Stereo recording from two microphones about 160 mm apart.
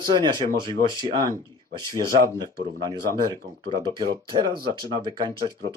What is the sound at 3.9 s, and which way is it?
Speech, 30° right (ahead or behind).